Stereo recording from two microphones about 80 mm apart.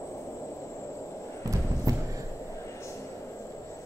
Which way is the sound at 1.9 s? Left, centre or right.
Right.